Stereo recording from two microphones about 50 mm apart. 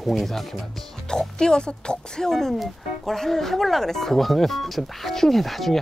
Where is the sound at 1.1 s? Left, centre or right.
Centre.